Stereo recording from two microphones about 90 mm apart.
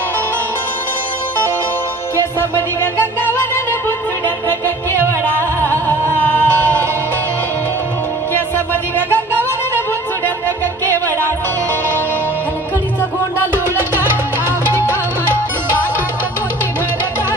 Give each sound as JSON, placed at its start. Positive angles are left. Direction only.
{"t": 4.5, "sound": "music", "side_deg": 25}
{"t": 8.9, "sound": "music", "side_deg": 20}